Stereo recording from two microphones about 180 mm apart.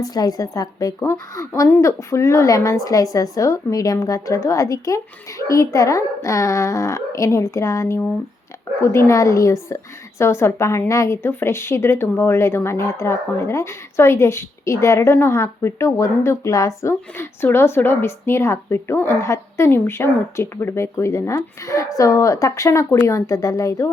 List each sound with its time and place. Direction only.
0.0 s a woman's voice: 20° left (ahead or behind)